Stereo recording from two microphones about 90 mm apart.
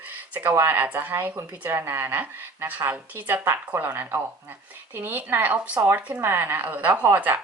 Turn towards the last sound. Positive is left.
turn(degrees=-25)  # may be behind; listen again after turning